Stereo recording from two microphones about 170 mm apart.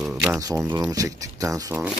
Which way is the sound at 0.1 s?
10° right (ahead or behind).